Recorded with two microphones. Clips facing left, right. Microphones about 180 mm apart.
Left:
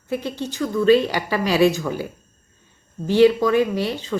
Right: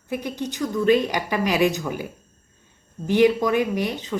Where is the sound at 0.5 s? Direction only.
15° right (ahead or behind).